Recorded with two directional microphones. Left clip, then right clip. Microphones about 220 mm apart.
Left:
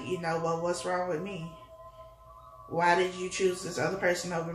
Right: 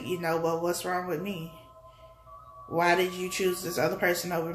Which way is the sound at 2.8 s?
45° right (ahead or behind).